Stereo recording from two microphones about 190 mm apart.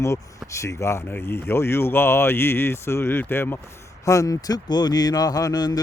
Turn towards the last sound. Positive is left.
turn(degrees=20)  # may be behind; listen again after turning